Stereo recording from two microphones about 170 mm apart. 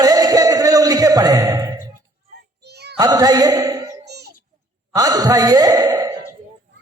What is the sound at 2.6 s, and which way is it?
Music, 75° right (ahead or behind).